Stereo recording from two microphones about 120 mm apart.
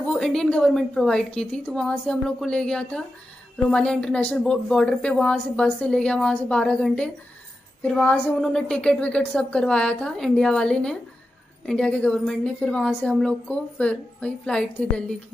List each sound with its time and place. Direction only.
0.1 s a woman's voice: 5° left (ahead or behind)